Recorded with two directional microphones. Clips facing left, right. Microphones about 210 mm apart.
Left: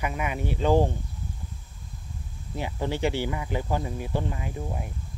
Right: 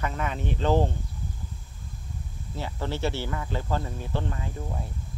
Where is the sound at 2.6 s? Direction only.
15° left (ahead or behind).